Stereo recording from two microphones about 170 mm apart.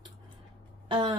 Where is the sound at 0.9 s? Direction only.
30° right (ahead or behind).